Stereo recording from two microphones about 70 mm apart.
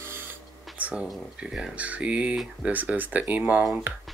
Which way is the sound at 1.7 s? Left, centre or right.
Centre.